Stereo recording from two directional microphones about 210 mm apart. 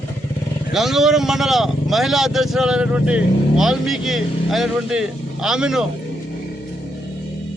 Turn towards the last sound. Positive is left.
turn(degrees=-5)  # may be behind; listen again after turning